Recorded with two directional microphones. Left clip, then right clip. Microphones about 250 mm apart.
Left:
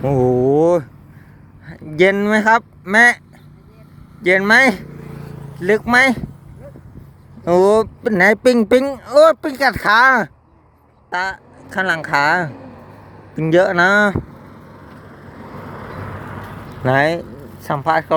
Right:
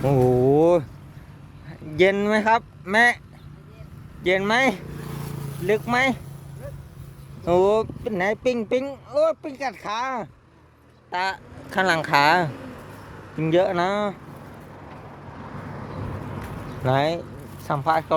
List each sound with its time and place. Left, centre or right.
0.0 s a sound: centre
1.6 s speech: centre
4.2 s speech: centre
7.4 s speech: centre
11.1 s speech: centre
12.5 s a sound: right
13.3 s speech: centre
14.8 s vehicle: left
16.1 s vehicle: left
17.6 s speech: centre